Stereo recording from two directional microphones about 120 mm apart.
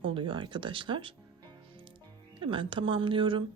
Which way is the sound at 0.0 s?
45° right (ahead or behind).